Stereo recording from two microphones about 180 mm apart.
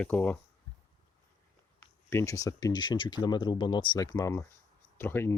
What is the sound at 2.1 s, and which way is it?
Speech, 15° left (ahead or behind).